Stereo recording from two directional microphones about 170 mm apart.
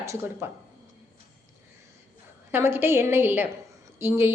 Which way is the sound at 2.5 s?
15° right (ahead or behind).